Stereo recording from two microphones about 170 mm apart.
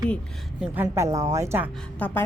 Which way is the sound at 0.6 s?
15° right (ahead or behind).